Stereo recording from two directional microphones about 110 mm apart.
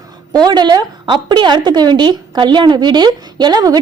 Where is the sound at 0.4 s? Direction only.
40° right (ahead or behind).